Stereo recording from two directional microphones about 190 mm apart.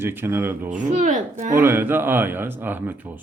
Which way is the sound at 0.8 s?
40° right (ahead or behind).